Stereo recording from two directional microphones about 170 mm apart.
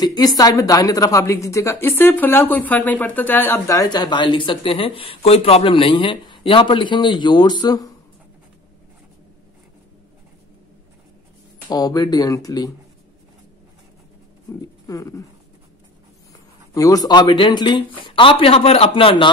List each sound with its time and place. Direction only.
0.0 s speech: 25° left (ahead or behind)
11.7 s speech: 20° left (ahead or behind)
14.6 s a sound: 20° left (ahead or behind)
16.7 s a man's voice: 20° left (ahead or behind)